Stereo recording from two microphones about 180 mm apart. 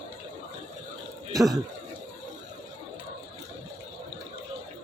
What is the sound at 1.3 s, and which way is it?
Speech, centre (ahead or behind).